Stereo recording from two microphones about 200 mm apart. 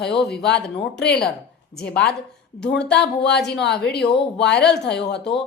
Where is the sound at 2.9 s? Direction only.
55° left (ahead or behind).